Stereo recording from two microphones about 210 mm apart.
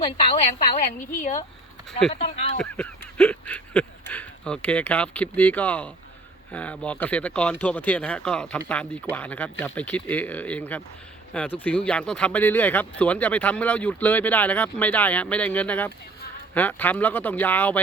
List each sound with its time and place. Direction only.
0.0 s a woman's voice: 25° left (ahead or behind)
2.1 s a woman's voice: 30° left (ahead or behind)
2.6 s speech: 5° left (ahead or behind)